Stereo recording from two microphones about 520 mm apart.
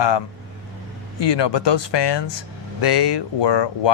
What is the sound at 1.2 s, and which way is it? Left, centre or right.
Speech, left.